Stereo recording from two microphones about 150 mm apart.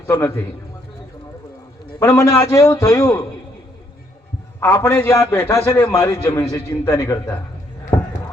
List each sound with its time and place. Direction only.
0.1 s a man's voice: 15° left (ahead or behind)
2.0 s a man's voice: 20° left (ahead or behind)
4.6 s a man's voice: 15° left (ahead or behind)